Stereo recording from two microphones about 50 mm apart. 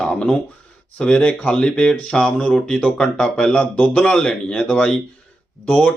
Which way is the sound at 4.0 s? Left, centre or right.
Centre.